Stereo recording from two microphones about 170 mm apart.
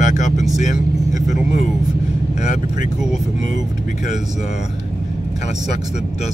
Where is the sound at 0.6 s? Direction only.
45° left (ahead or behind).